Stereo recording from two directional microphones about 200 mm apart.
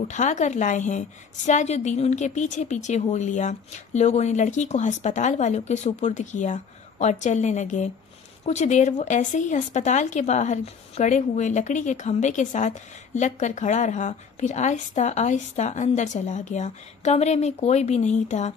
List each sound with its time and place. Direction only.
0.1 s speech: 35° left (ahead or behind)